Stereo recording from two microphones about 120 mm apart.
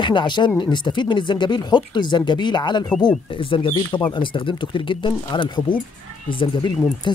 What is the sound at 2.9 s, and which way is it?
Speech, 5° left (ahead or behind).